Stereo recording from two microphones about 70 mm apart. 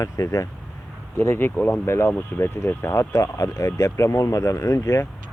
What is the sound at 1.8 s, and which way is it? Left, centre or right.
Speech, left.